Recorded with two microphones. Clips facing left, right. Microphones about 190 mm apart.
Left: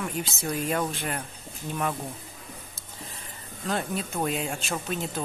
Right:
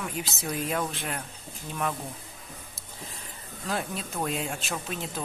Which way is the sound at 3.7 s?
Centre (ahead or behind).